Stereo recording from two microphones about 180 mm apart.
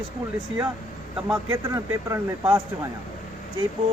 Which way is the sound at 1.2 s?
15° right (ahead or behind).